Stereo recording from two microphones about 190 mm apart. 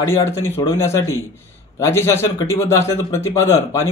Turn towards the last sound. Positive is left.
turn(degrees=15)  # may be behind; listen again after turning